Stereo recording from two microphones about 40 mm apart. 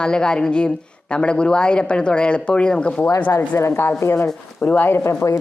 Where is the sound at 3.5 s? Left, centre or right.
Left.